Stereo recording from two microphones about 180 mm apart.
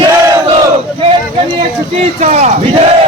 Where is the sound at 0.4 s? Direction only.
30° right (ahead or behind).